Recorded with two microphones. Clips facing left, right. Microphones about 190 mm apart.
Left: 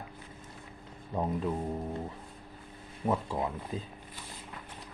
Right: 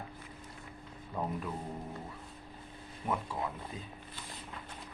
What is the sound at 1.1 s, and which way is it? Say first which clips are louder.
Speech: left 5 dB; 20° left (ahead or behind).